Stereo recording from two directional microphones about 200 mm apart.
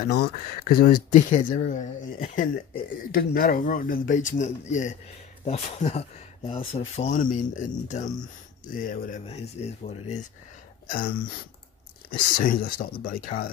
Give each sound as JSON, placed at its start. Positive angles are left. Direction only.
{"t": 0.0, "sound": "speech", "side_deg": 50}
{"t": 7.0, "sound": "speech", "side_deg": 40}
{"t": 9.2, "sound": "speech", "side_deg": 30}
{"t": 10.9, "sound": "speech", "side_deg": 45}